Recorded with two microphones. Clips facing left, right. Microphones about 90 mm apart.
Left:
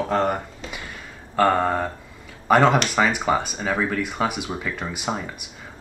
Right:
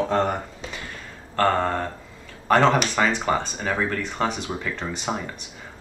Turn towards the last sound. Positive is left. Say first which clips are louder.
# left 1 dB
turn(degrees=5)  # may be behind; listen again after turning